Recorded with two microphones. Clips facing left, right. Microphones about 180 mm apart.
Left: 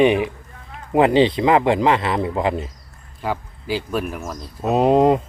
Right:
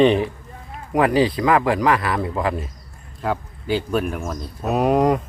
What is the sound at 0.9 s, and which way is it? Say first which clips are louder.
Speech: left 3 dB; 25° left (ahead or behind).